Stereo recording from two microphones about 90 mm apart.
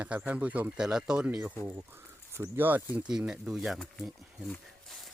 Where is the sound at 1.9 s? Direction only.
25° right (ahead or behind).